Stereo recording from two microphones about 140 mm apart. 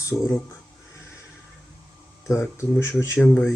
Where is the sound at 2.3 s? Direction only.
20° left (ahead or behind).